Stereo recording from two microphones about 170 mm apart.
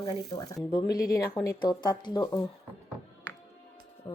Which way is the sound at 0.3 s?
25° left (ahead or behind).